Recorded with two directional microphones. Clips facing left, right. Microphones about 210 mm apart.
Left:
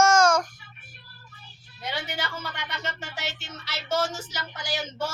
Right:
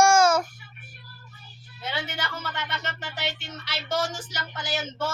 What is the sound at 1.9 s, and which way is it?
Speech, 10° left (ahead or behind).